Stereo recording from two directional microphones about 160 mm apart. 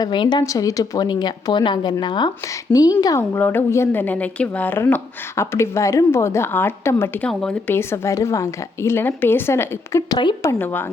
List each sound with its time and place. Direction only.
0.0 s a woman's voice: 30° left (ahead or behind); by 10.9 s 15° left (ahead or behind)